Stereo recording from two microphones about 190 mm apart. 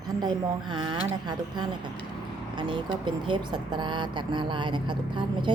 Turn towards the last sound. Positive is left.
turn(degrees=-25)  # may be behind; listen again after turning